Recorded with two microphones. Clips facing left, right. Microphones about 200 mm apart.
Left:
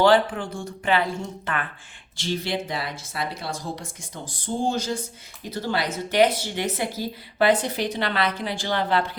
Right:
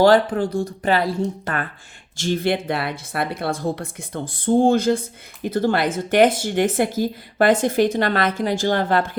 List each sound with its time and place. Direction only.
0.0 s speech: 40° right (ahead or behind)
2.1 s speech: 50° right (ahead or behind)